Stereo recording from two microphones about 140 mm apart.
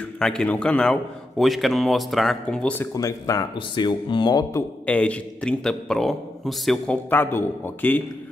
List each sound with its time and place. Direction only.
0.2 s a man's voice: 5° left (ahead or behind)
2.9 s speech: 25° left (ahead or behind)
3.5 s speech: 35° left (ahead or behind)
4.8 s a man's voice: 10° left (ahead or behind)
7.1 s a man's voice: 15° left (ahead or behind)